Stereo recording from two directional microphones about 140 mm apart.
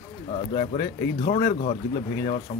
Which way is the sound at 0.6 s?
65° left (ahead or behind).